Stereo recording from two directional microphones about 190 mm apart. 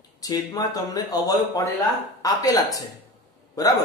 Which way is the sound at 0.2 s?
20° left (ahead or behind).